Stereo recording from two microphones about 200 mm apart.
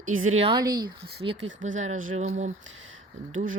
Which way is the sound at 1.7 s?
35° right (ahead or behind).